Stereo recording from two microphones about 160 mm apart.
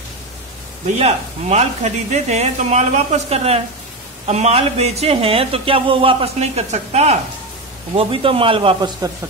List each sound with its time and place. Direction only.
0.8 s speech: 45° right (ahead or behind); by 9.1 s 30° right (ahead or behind)